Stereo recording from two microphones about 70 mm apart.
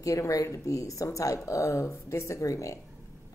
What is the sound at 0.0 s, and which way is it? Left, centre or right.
Speech, left.